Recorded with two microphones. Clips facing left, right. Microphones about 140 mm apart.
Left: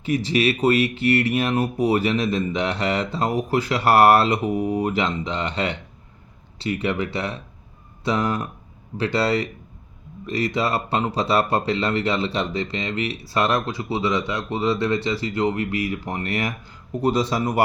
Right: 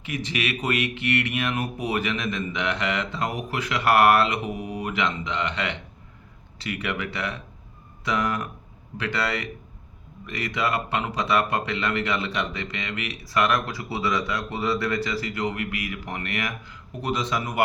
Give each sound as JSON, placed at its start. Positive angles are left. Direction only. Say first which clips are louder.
{"t": 0.0, "sound": "speech", "louder": "left 8 dB", "side_deg": 35}